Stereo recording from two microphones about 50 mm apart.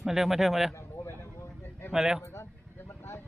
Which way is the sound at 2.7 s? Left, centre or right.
Left.